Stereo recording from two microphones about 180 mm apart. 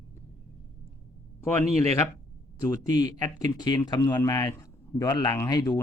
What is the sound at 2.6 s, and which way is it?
Speech, 20° left (ahead or behind).